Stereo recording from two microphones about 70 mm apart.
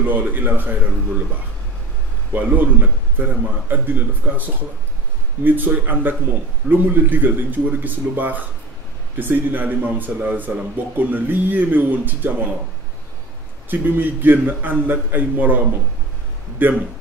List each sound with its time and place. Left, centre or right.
0.0 s speech: right
2.3 s speech: right
13.7 s speech: right